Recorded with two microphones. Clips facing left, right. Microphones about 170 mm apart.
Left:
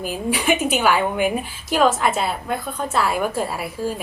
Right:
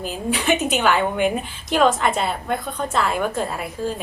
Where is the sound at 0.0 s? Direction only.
10° left (ahead or behind).